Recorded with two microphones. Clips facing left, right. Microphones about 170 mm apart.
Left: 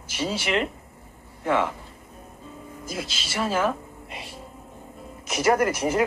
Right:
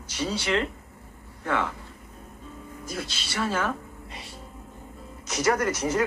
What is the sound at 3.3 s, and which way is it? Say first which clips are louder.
Speech: left 3 dB; 15° left (ahead or behind).